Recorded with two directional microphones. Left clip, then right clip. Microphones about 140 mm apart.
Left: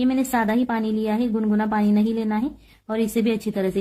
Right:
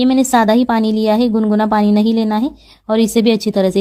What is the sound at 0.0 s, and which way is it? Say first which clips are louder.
A woman's voice: right 9 dB; 50° right (ahead or behind).